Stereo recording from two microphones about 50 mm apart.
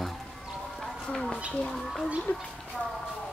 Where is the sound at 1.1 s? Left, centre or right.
Centre.